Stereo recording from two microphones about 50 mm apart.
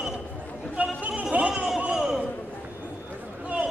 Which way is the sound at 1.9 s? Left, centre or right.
Centre.